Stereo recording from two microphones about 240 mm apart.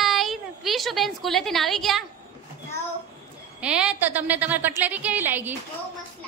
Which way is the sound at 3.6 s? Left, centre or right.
Centre.